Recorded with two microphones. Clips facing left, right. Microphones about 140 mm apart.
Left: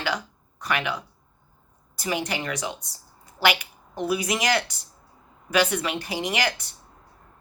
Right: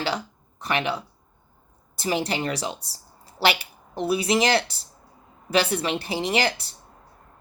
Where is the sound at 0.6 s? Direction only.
30° right (ahead or behind).